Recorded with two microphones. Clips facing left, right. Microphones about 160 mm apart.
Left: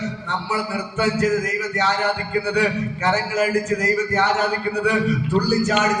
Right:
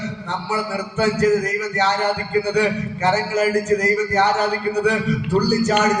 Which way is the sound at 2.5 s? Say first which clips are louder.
Right 1 dB; 40° right (ahead or behind).